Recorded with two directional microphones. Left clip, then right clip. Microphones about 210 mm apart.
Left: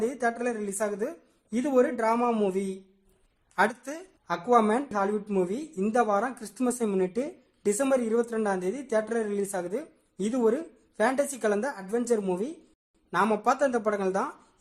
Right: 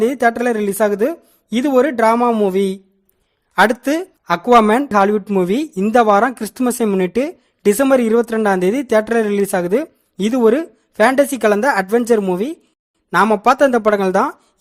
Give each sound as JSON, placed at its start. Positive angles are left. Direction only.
{"t": 0.0, "sound": "speech", "side_deg": -35}